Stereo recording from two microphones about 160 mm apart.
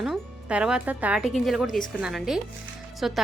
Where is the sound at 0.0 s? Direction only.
5° right (ahead or behind).